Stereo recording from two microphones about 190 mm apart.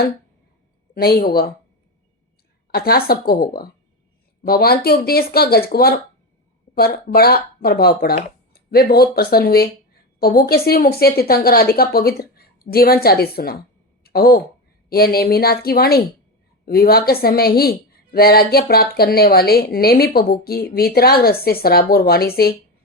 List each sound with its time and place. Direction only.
0.9 s speech: 55° left (ahead or behind)
2.7 s a woman's voice: 55° left (ahead or behind)